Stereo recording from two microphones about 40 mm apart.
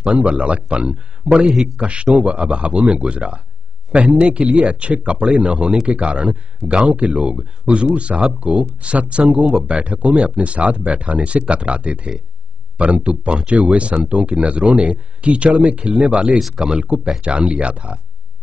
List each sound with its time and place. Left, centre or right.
0.0 s speech: right
16.3 s speech: centre
16.7 s speech: right